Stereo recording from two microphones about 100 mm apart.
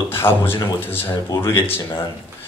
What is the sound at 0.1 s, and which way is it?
Speech, 20° left (ahead or behind).